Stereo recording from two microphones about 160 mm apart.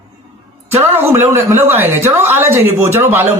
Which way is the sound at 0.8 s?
15° right (ahead or behind).